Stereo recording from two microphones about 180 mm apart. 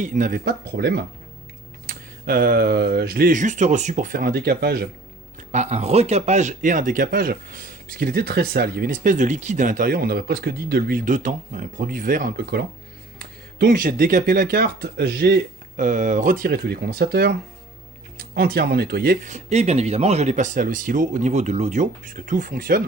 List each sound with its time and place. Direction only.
0.0 s speech: 45° right (ahead or behind)
5.4 s speech: 40° right (ahead or behind)